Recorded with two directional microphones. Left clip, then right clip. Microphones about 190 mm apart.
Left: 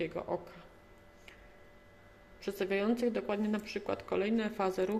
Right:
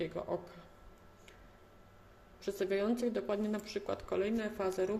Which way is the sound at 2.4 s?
5° left (ahead or behind).